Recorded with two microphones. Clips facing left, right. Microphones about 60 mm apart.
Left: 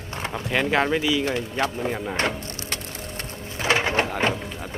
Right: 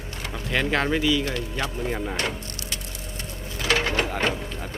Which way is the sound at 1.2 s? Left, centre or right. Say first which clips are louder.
Left 4 dB; left.